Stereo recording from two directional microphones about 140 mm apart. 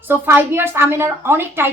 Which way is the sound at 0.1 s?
15° right (ahead or behind).